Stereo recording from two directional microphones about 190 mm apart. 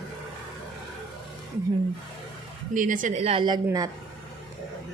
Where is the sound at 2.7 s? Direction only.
45° right (ahead or behind); by 3.9 s 20° right (ahead or behind).